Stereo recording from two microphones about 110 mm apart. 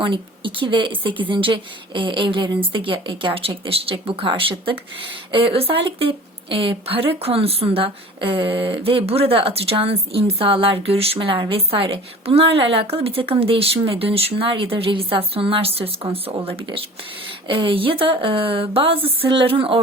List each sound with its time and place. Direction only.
0.0 s a woman's voice: 50° right (ahead or behind)